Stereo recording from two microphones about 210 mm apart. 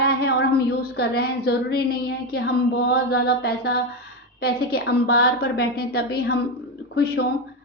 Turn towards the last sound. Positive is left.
turn(degrees=50)  # may be behind; listen again after turning